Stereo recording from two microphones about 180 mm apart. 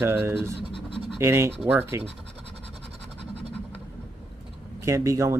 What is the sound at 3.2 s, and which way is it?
Scratch, 75° right (ahead or behind).